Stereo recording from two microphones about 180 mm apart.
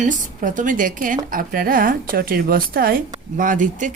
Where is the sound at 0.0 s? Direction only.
45° right (ahead or behind).